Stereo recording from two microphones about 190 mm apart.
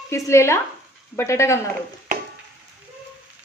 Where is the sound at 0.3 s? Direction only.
15° left (ahead or behind).